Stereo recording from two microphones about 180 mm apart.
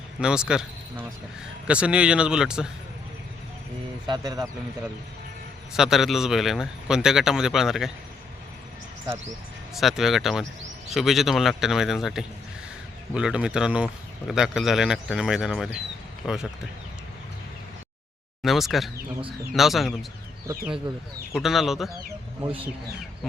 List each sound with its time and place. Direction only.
0.2 s a man's voice: 5° right (ahead or behind)
4.0 s speech: 20° right (ahead or behind)
5.7 s a man's voice: centre (ahead or behind)
9.7 s a man's voice: centre (ahead or behind)
18.4 s a man's voice: centre (ahead or behind)
21.3 s a man's voice: centre (ahead or behind)